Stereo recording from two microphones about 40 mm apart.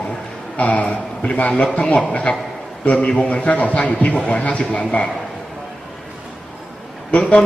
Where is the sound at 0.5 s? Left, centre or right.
Left.